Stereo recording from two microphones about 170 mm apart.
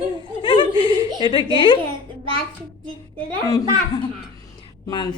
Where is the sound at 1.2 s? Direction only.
30° left (ahead or behind).